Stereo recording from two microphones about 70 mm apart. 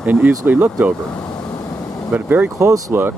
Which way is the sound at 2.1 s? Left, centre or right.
Right.